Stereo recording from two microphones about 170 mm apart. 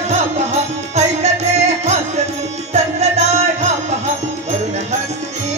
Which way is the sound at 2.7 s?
40° right (ahead or behind).